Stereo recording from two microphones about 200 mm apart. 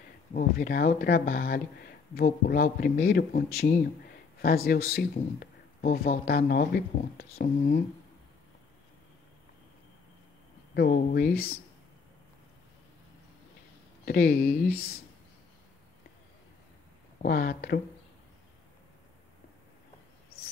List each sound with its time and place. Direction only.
0.3 s speech: 50° left (ahead or behind)
10.7 s speech: 50° left (ahead or behind)
14.0 s speech: 45° left (ahead or behind)
17.2 s speech: 50° left (ahead or behind)